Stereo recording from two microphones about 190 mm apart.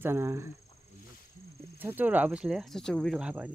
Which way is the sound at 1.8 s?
10° right (ahead or behind).